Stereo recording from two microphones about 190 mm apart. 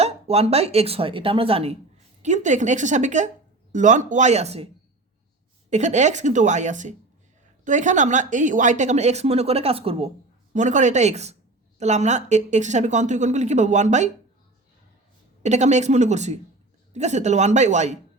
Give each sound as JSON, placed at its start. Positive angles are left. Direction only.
{"t": 0.0, "sound": "speech", "side_deg": -35}
{"t": 5.7, "sound": "speech", "side_deg": -40}
{"t": 15.4, "sound": "speech", "side_deg": -35}